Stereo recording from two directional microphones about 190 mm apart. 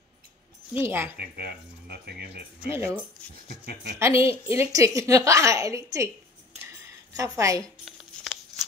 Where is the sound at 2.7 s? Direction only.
15° right (ahead or behind).